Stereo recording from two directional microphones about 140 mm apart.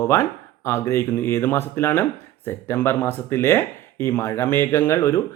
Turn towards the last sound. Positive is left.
turn(degrees=20)  # may be behind; listen again after turning